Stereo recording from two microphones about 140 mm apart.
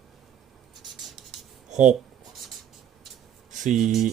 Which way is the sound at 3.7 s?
Centre (ahead or behind).